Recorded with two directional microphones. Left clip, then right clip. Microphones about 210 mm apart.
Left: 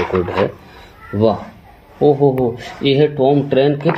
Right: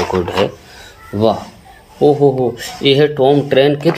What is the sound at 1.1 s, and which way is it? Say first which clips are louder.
Speech: right 1 dB; 25° right (ahead or behind).